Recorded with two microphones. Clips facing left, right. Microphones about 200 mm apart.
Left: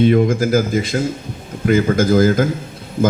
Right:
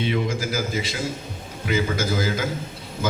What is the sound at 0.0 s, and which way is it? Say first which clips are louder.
A man's voice: left 11 dB; 50° left (ahead or behind).